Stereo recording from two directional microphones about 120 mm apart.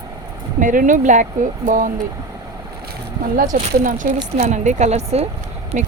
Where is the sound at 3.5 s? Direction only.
90° right.